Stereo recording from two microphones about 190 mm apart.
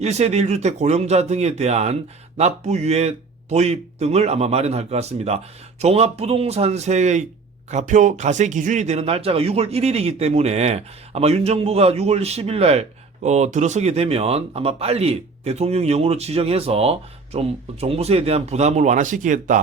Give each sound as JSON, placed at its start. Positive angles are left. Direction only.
{"t": 0.0, "sound": "speech", "side_deg": -35}